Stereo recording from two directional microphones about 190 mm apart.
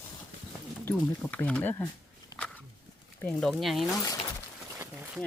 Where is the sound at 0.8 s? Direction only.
5° left (ahead or behind).